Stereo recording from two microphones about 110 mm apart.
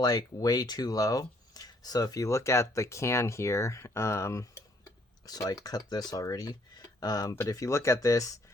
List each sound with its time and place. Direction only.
0.0 s speech: 35° left (ahead or behind)
5.2 s speech: 35° left (ahead or behind)